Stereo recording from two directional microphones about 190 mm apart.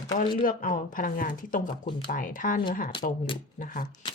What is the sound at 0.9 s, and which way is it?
Speech, 45° left (ahead or behind).